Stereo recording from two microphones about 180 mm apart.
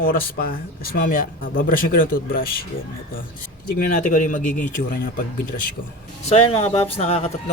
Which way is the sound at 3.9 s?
45° left (ahead or behind).